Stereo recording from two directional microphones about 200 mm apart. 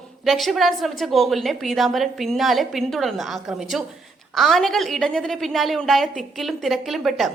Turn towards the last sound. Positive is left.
turn(degrees=0)  # may be behind; listen again after turning